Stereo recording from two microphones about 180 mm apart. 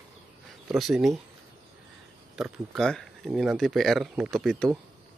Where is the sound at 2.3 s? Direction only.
Centre (ahead or behind).